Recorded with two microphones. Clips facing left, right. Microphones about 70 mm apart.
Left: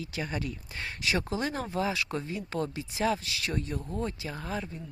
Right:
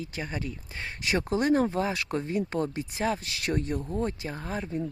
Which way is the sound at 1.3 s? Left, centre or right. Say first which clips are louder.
Right 7 dB; right.